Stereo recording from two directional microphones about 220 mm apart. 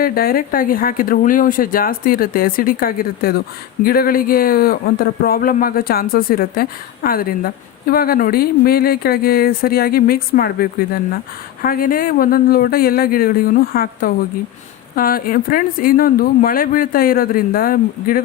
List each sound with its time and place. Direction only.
0.0 s speech: 40° left (ahead or behind)